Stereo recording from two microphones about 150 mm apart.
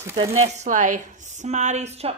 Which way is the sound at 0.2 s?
45° right (ahead or behind).